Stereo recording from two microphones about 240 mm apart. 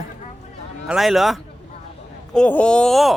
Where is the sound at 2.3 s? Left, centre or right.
Centre.